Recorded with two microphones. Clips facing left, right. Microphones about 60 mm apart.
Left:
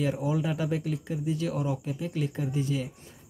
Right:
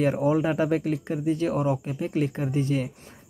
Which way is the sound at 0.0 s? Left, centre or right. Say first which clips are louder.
Right 6 dB; right.